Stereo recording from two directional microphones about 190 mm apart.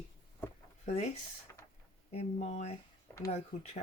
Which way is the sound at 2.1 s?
35° left (ahead or behind).